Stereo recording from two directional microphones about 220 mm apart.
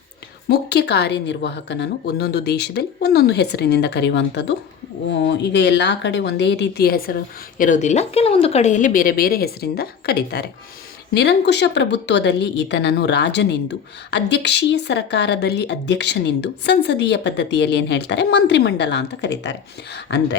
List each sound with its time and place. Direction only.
0.4 s a woman's voice: 45° left (ahead or behind)